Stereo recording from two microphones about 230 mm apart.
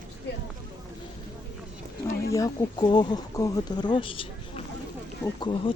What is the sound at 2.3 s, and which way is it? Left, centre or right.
Speech, centre.